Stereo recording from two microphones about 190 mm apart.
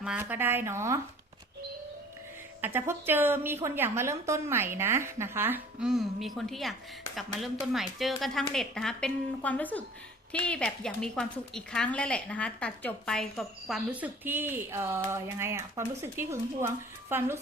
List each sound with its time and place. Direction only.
0.0 s a woman's voice: 5° right (ahead or behind)
2.6 s a woman's voice: 10° right (ahead or behind)